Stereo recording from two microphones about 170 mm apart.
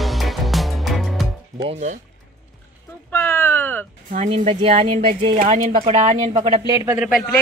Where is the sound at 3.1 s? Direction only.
15° left (ahead or behind).